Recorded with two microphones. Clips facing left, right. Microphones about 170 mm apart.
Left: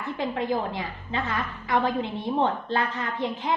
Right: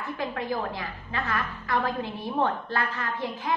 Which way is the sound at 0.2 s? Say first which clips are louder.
Left 3 dB; 25° left (ahead or behind).